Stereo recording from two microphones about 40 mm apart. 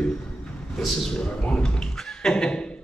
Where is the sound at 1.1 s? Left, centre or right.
Centre.